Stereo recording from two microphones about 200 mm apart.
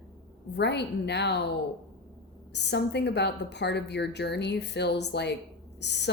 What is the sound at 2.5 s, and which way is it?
Speech, 60° left (ahead or behind).